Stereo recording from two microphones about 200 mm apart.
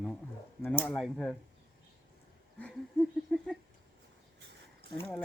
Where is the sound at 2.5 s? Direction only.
5° left (ahead or behind).